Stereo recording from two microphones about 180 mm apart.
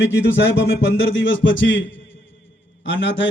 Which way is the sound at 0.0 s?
85° left.